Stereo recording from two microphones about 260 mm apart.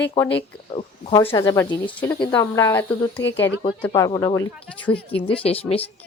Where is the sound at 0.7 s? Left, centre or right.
Centre.